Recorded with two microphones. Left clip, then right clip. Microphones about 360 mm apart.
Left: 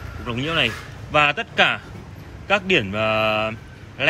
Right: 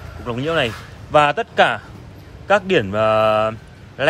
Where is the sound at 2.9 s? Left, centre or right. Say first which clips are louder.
Right 5 dB; centre.